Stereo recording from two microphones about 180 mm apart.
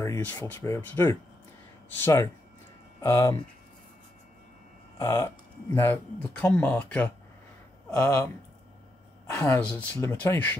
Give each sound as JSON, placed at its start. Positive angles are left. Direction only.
{"t": 0.0, "sound": "speech", "side_deg": 15}
{"t": 4.9, "sound": "speech", "side_deg": 15}
{"t": 9.3, "sound": "speech", "side_deg": 15}